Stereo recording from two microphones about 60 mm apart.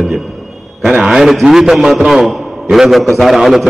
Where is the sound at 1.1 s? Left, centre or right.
Centre.